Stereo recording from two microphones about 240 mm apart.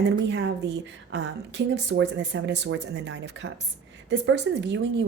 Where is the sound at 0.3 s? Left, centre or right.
Right.